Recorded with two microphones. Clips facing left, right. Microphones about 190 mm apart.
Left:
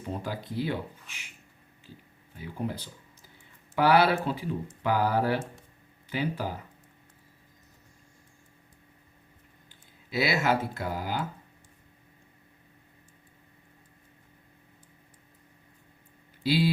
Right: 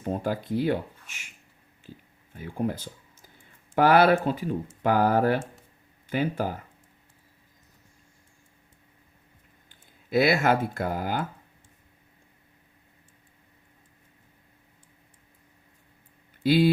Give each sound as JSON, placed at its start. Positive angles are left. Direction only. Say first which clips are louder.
{"t": 0.0, "sound": "speech", "louder": "right 6 dB", "side_deg": -50}
{"t": 2.3, "sound": "speech", "louder": "right 5 dB", "side_deg": -50}
{"t": 10.1, "sound": "speech", "louder": "right 5 dB", "side_deg": -50}
{"t": 16.4, "sound": "speech", "louder": "right 5 dB", "side_deg": -50}